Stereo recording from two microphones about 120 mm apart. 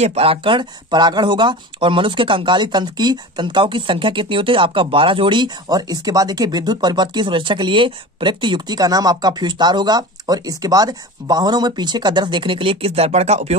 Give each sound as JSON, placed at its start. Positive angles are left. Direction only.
{"t": 0.0, "sound": "speech", "side_deg": -60}